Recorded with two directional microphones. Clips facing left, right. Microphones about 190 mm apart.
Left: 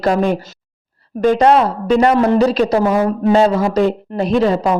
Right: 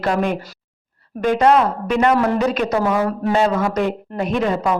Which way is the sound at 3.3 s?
35° left (ahead or behind).